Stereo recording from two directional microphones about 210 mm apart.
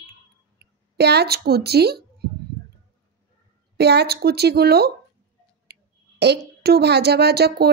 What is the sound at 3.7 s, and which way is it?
A woman's voice, 50° right (ahead or behind).